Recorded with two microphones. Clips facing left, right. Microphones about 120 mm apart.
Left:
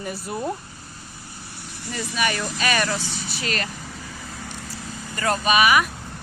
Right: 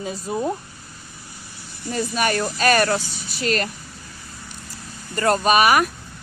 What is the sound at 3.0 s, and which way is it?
Speech, 90° left.